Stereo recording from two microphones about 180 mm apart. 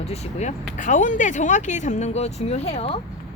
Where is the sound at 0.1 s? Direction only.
40° left (ahead or behind).